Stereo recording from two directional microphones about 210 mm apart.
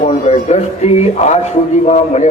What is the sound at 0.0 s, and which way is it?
A man's voice, 30° left (ahead or behind).